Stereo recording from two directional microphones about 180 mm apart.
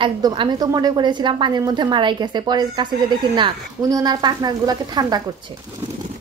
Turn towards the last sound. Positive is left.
turn(degrees=-20)  # may be behind; listen again after turning